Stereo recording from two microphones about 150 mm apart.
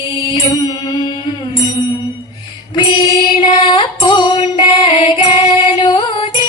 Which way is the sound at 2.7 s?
30° left (ahead or behind).